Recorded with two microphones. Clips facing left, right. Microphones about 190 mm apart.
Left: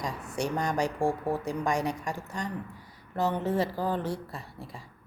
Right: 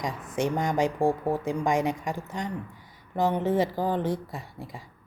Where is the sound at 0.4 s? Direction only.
20° right (ahead or behind).